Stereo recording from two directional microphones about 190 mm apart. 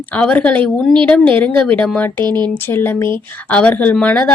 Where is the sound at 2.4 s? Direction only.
10° left (ahead or behind).